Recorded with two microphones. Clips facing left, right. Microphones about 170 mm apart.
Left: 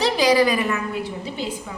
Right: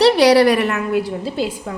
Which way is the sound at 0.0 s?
70° right (ahead or behind).